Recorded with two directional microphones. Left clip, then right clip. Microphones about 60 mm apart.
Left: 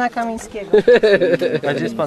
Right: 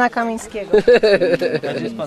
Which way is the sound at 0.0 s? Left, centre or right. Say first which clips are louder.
Right 2 dB; right.